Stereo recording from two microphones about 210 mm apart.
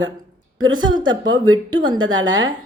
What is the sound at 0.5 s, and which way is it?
A woman's voice, 20° right (ahead or behind).